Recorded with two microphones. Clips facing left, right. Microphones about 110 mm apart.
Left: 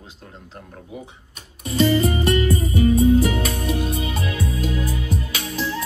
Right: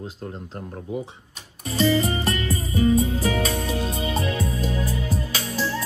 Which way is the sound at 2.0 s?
30° right (ahead or behind).